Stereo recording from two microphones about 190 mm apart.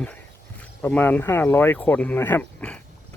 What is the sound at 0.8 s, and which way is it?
Speech, 10° left (ahead or behind).